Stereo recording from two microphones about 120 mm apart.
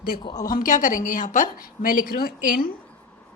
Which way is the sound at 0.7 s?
90° left.